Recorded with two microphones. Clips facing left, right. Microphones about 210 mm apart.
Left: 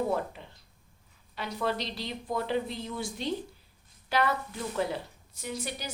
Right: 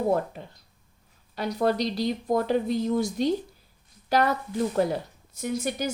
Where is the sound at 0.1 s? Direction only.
45° right (ahead or behind).